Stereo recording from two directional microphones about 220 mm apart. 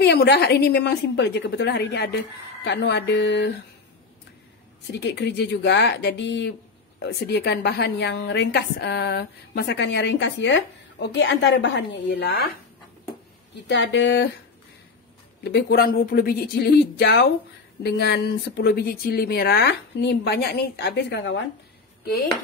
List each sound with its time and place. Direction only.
0.0 s a woman's voice: 50° left (ahead or behind)
5.0 s a woman's voice: 50° left (ahead or behind)
13.7 s a woman's voice: 55° left (ahead or behind)
15.4 s a woman's voice: 45° left (ahead or behind)